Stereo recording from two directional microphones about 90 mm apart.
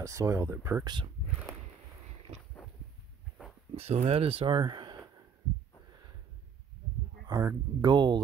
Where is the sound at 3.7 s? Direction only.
90° right.